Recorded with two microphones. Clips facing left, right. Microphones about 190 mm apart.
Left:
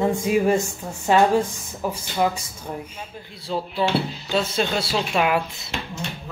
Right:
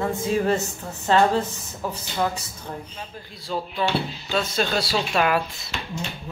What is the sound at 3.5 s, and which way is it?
A woman's voice, 20° left (ahead or behind).